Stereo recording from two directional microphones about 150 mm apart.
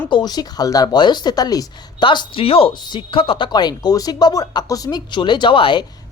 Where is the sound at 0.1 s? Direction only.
30° left (ahead or behind).